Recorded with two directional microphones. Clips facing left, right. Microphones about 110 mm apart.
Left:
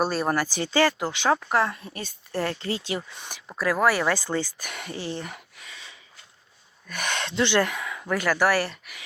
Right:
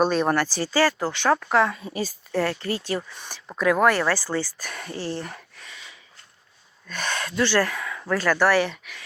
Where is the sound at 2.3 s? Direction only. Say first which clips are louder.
Right 2 dB; 20° left (ahead or behind).